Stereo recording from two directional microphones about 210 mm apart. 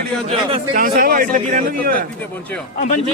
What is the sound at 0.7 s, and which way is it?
A man's voice, 40° right (ahead or behind).